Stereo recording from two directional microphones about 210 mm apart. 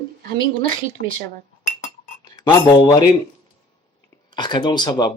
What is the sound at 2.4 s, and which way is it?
Speech, 20° left (ahead or behind).